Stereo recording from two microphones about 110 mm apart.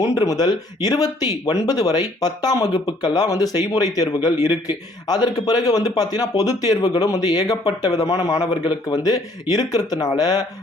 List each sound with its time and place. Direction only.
0.0 s speech: 30° left (ahead or behind)